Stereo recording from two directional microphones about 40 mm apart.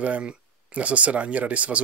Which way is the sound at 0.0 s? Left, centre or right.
Right.